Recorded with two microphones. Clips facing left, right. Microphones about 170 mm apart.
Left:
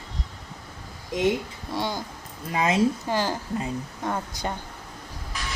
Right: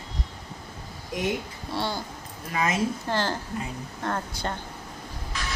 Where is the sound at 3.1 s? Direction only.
10° left (ahead or behind).